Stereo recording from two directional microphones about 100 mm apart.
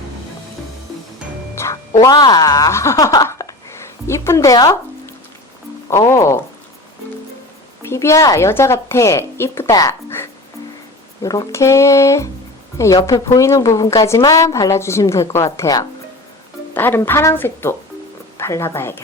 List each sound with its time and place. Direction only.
1.5 s a woman's voice: 30° left (ahead or behind)
4.0 s a woman's voice: 25° left (ahead or behind)
4.5 s a woman's voice: 35° left (ahead or behind)
5.9 s a woman's voice: 30° left (ahead or behind)
7.8 s a woman's voice: 30° left (ahead or behind)
11.2 s a woman's voice: 35° left (ahead or behind)
16.7 s a woman's voice: 20° left (ahead or behind)